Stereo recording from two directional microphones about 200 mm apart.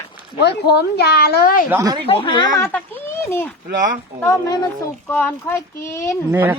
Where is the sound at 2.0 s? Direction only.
25° left (ahead or behind).